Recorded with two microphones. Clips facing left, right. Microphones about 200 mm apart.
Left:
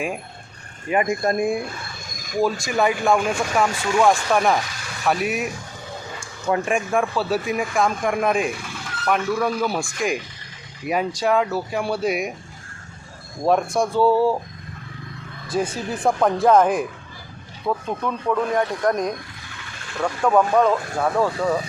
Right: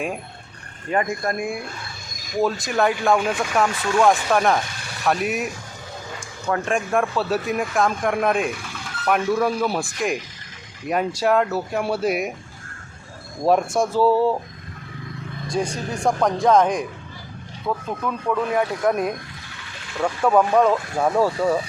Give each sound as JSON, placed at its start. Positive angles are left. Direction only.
{"t": 0.9, "sound": "speech", "side_deg": 10}
{"t": 1.2, "sound": "speech", "side_deg": 30}
{"t": 2.4, "sound": "speech", "side_deg": 0}
{"t": 6.7, "sound": "speech", "side_deg": 0}
{"t": 13.7, "sound": "speech", "side_deg": 0}
{"t": 15.7, "sound": "speech", "side_deg": 5}